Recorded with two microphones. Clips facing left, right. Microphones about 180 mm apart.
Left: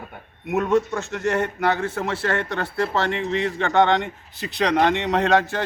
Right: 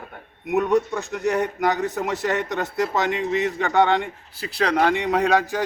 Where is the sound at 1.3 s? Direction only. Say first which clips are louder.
Left 1 dB; 15° right (ahead or behind).